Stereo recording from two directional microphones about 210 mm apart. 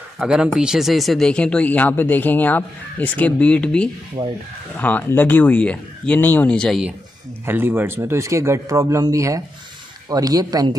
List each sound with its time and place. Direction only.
0.2 s speech: 5° right (ahead or behind)
7.4 s speech: 10° right (ahead or behind)